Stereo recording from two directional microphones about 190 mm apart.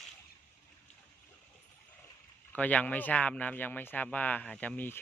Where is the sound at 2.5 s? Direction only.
5° left (ahead or behind).